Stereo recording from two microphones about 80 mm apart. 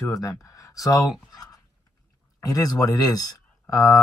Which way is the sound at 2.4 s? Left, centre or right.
Left.